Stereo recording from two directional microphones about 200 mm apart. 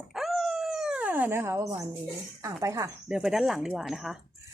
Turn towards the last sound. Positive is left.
turn(degrees=0)  # may be behind; listen again after turning